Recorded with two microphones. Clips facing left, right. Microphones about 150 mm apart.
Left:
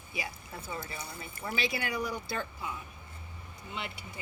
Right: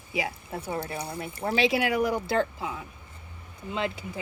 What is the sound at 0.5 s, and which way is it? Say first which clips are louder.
Speech: right 8 dB; 65° right (ahead or behind).